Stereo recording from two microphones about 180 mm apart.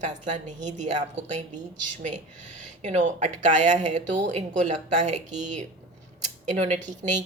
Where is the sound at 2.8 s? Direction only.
40° right (ahead or behind).